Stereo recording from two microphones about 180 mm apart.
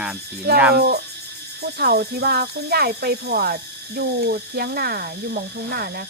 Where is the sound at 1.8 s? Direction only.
60° right (ahead or behind).